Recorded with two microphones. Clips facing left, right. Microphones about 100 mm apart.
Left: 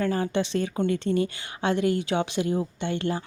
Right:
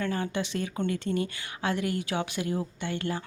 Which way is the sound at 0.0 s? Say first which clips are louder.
Left 5 dB; 35° left (ahead or behind).